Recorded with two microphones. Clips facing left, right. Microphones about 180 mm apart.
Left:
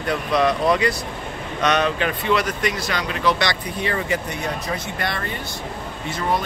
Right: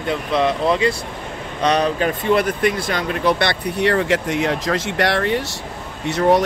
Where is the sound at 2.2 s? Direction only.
50° right (ahead or behind).